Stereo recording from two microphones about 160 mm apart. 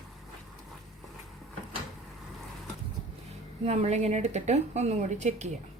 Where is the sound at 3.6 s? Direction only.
45° right (ahead or behind).